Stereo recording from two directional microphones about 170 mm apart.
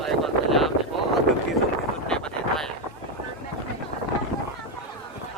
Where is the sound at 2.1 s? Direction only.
Centre (ahead or behind).